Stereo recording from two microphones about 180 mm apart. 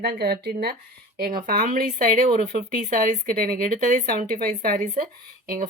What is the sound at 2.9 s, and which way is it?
A woman's voice, 45° right (ahead or behind).